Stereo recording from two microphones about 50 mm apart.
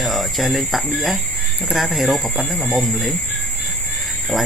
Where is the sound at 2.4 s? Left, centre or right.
Right.